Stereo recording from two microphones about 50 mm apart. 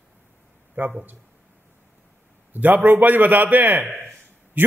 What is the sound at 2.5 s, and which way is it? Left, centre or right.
A man's voice, right.